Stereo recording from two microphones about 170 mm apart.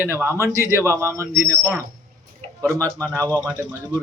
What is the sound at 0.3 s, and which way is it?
Speech, 15° right (ahead or behind).